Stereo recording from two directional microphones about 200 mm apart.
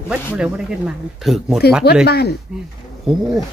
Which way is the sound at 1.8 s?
50° left (ahead or behind).